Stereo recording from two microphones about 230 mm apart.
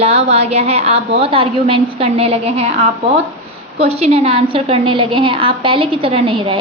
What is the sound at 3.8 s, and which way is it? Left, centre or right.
A woman's voice, right.